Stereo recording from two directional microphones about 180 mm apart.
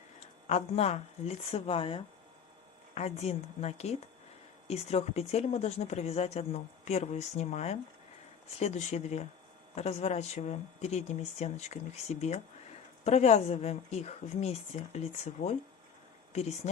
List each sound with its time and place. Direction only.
0.4 s speech: 35° left (ahead or behind)